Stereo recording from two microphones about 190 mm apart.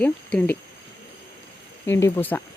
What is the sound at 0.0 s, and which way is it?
Speech, 5° left (ahead or behind).